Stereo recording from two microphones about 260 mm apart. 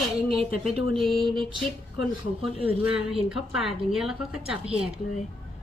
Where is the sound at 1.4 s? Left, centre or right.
Centre.